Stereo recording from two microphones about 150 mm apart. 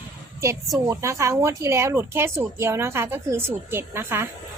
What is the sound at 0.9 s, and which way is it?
Speech, 20° right (ahead or behind).